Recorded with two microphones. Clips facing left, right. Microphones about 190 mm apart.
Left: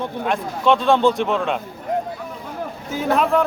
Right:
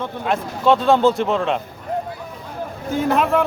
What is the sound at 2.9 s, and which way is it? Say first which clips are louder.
Speech: right 1 dB; centre (ahead or behind).